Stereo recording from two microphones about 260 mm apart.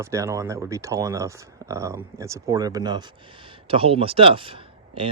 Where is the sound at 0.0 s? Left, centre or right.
Centre.